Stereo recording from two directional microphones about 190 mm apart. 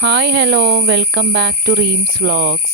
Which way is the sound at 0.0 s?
60° right (ahead or behind).